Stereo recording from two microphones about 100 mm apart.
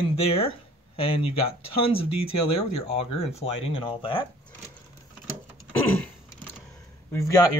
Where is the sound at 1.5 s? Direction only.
65° left (ahead or behind).